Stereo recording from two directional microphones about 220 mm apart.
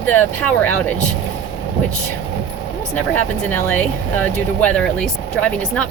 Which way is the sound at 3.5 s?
10° left (ahead or behind).